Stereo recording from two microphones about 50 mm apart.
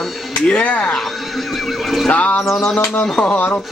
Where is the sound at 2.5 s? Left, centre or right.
Centre.